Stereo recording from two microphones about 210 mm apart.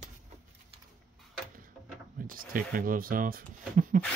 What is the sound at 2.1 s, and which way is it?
Speech, 40° right (ahead or behind).